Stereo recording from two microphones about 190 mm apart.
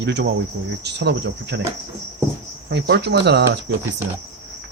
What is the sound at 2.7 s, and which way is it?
Speech, 65° right (ahead or behind).